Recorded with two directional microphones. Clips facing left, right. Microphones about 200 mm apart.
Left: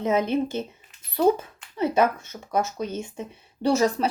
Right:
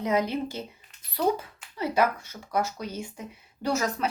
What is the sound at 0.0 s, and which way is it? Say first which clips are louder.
Speech: left 4 dB; 25° left (ahead or behind).